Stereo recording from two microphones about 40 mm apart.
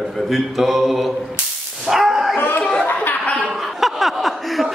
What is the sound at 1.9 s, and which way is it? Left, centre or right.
Dog, centre.